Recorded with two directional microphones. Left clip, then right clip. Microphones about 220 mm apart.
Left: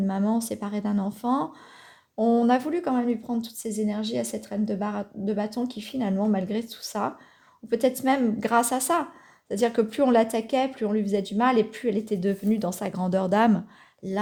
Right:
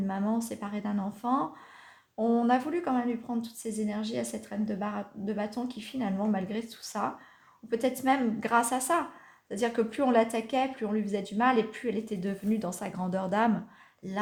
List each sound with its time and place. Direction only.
0.1 s speech: 35° left (ahead or behind)